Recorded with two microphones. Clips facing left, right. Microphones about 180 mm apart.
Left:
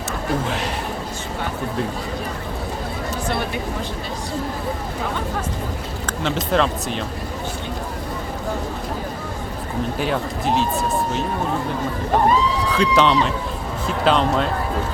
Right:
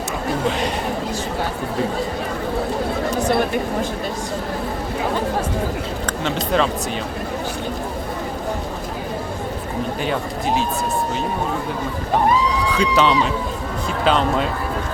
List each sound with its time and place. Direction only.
6.1 s speech: centre (ahead or behind)
10.0 s speech: centre (ahead or behind)
12.7 s speech: centre (ahead or behind)